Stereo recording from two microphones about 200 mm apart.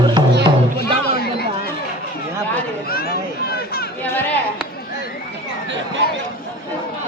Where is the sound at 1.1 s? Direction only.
50° left (ahead or behind).